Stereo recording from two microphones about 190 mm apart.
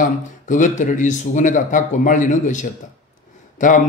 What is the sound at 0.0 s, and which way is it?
A man's voice, 40° left (ahead or behind).